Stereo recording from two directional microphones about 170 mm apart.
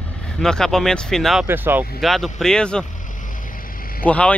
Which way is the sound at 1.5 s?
10° right (ahead or behind).